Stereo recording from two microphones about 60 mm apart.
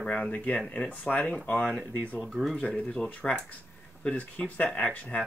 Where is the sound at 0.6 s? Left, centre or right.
Centre.